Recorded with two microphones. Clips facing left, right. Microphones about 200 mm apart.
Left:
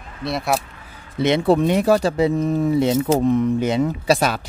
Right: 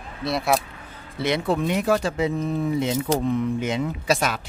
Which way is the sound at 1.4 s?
35° left (ahead or behind).